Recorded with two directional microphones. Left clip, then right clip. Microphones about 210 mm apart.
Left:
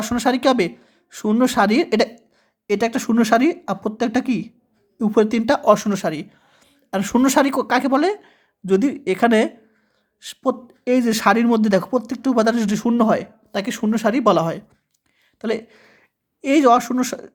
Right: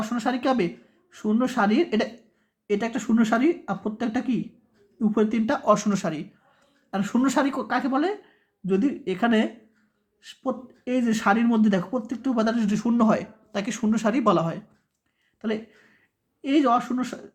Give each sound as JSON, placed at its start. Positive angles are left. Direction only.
{"t": 0.0, "sound": "a man's voice", "side_deg": 45}